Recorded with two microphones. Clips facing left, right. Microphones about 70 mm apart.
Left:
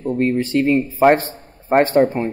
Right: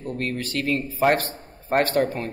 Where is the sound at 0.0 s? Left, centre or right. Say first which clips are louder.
Left 10 dB; left.